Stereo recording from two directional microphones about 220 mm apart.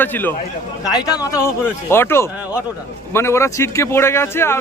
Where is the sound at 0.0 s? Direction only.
10° left (ahead or behind).